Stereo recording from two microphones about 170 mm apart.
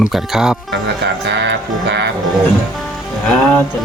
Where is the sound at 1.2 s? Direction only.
90° right.